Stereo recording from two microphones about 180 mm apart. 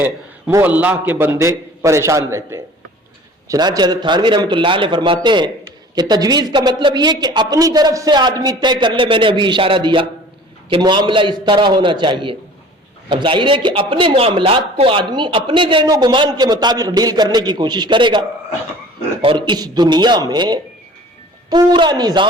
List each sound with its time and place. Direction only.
0.0 s a man's voice: 10° right (ahead or behind)